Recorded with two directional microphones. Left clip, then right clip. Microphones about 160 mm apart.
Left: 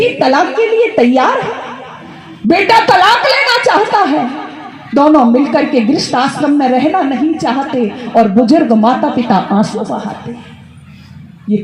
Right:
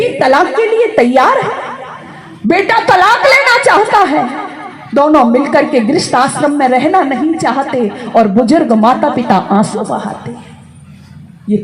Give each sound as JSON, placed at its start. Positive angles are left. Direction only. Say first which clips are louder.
{"t": 0.0, "sound": "a woman's voice", "louder": "right 1 dB", "side_deg": -45}